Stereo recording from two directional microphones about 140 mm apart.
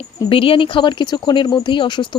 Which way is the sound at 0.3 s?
40° left (ahead or behind).